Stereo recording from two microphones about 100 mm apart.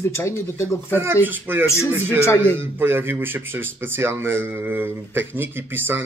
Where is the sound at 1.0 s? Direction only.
20° right (ahead or behind).